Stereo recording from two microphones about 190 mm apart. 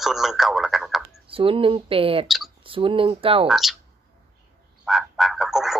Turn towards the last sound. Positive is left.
turn(degrees=0)  # may be behind; listen again after turning